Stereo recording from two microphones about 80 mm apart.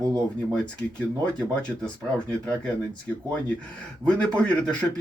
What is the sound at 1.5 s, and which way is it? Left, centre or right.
Speech, centre.